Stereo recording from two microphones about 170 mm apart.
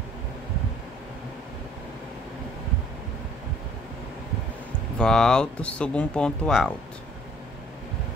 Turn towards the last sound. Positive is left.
turn(degrees=5)  # may be behind; listen again after turning